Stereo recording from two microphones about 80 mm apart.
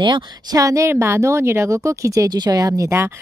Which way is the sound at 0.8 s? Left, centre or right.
Right.